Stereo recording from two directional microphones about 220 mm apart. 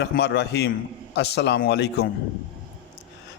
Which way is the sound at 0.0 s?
50° left (ahead or behind).